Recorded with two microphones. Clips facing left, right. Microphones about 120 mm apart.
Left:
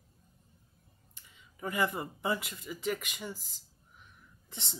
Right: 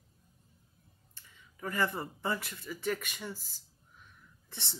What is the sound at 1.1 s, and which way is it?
Speech, 15° left (ahead or behind).